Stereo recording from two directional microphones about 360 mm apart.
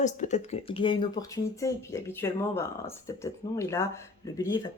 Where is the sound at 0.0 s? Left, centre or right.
Centre.